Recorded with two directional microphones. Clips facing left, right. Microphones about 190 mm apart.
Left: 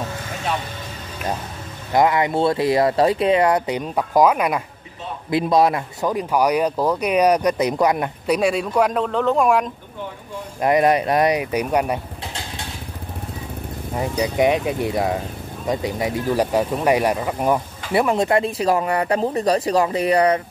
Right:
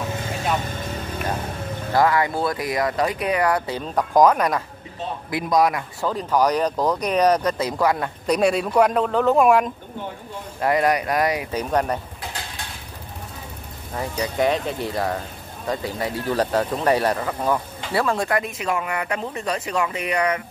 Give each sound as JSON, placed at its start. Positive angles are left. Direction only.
{"t": 1.9, "sound": "speech", "side_deg": 20}
{"t": 3.9, "sound": "speech", "side_deg": 5}
{"t": 5.3, "sound": "speech", "side_deg": 25}
{"t": 6.0, "sound": "speech", "side_deg": 10}
{"t": 8.3, "sound": "speech", "side_deg": 0}
{"t": 10.6, "sound": "speech", "side_deg": 20}
{"t": 13.9, "sound": "speech", "side_deg": 20}